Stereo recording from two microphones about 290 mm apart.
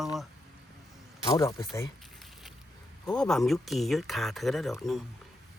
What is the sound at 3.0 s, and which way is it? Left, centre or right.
Speech, centre.